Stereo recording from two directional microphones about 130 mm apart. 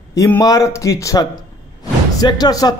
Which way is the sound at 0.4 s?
25° left (ahead or behind).